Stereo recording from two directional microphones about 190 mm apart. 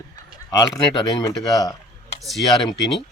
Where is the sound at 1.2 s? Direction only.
20° left (ahead or behind).